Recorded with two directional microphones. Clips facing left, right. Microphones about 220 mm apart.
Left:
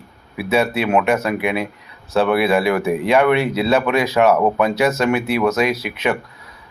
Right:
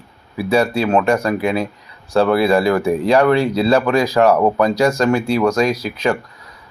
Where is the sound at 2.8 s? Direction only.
30° right (ahead or behind).